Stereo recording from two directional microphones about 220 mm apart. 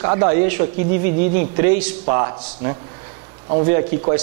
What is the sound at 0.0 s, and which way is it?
A man's voice, 20° right (ahead or behind).